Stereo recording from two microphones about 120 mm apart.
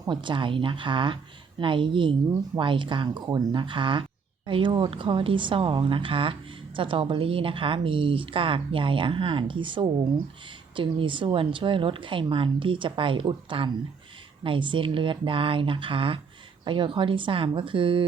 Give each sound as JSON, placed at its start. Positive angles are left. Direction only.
{"t": 0.1, "sound": "speech", "side_deg": -40}